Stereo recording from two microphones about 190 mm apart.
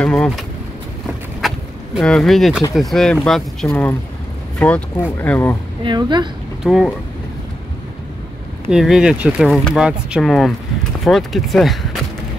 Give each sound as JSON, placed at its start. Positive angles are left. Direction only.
{"t": 0.0, "sound": "speech", "side_deg": 5}
{"t": 1.4, "sound": "a sound", "side_deg": 0}
{"t": 2.0, "sound": "speech", "side_deg": 0}
{"t": 5.9, "sound": "a woman's voice", "side_deg": -25}
{"t": 6.6, "sound": "speech", "side_deg": 0}
{"t": 8.7, "sound": "speech", "side_deg": 0}